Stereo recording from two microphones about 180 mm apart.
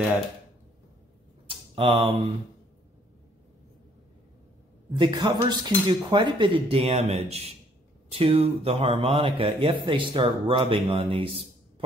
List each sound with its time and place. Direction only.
1.5 s speech: 30° right (ahead or behind)
4.9 s a man's voice: 25° right (ahead or behind)